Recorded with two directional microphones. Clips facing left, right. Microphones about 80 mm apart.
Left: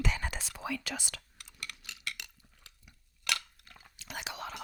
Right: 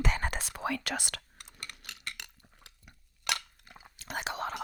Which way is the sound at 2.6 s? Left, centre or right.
Right.